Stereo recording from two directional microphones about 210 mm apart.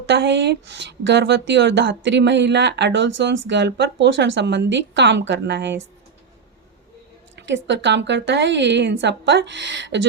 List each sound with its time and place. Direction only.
0.0 s speech: 55° right (ahead or behind)
7.3 s speech: 60° right (ahead or behind)